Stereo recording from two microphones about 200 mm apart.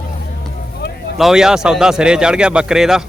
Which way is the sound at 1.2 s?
Centre (ahead or behind).